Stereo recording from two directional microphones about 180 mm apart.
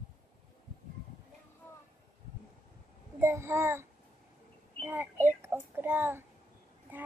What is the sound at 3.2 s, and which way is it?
Speech, 15° right (ahead or behind).